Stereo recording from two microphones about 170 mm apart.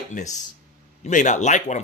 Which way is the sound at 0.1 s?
45° left (ahead or behind).